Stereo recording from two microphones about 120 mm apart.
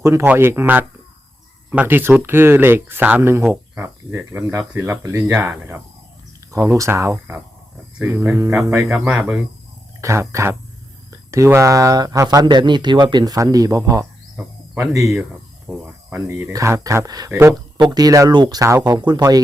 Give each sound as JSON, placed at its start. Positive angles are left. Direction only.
{"t": 0.0, "sound": "speech", "side_deg": -25}
{"t": 8.9, "sound": "speech", "side_deg": -5}
{"t": 10.0, "sound": "speech", "side_deg": -25}
{"t": 14.3, "sound": "cricket", "side_deg": -5}
{"t": 15.1, "sound": "speech", "side_deg": -10}
{"t": 16.3, "sound": "speech", "side_deg": -25}